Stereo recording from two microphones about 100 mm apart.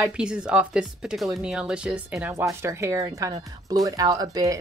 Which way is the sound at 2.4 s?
25° right (ahead or behind).